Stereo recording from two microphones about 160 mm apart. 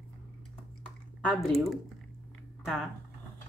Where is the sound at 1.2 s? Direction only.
5° left (ahead or behind).